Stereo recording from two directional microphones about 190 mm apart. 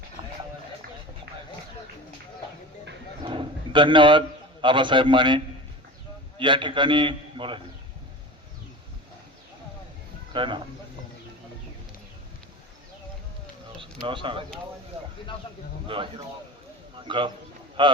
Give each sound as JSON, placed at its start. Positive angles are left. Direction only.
{"t": 3.2, "sound": "a sound", "side_deg": -25}
{"t": 4.6, "sound": "a man's voice", "side_deg": -25}
{"t": 6.4, "sound": "a man's voice", "side_deg": -25}
{"t": 10.3, "sound": "a man's voice", "side_deg": -25}
{"t": 14.0, "sound": "a man's voice", "side_deg": -25}
{"t": 15.9, "sound": "a man's voice", "side_deg": -25}